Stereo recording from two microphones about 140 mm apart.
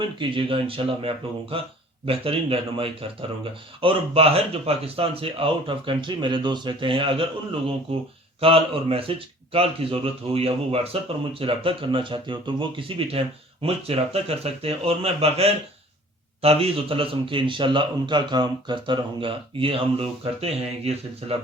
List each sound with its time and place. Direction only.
0.0 s a man's voice: 35° right (ahead or behind)
8.4 s a man's voice: 40° right (ahead or behind)